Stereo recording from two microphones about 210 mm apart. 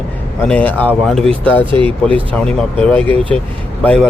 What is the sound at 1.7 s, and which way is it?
Speech, 25° right (ahead or behind).